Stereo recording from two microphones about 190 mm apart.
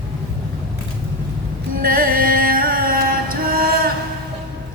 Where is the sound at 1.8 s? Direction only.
50° right (ahead or behind).